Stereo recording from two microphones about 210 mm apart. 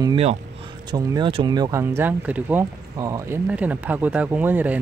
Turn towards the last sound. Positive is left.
turn(degrees=-10)  # may be behind; listen again after turning